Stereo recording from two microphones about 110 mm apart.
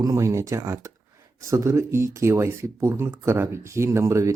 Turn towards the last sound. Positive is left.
turn(degrees=-25)  # may be behind; listen again after turning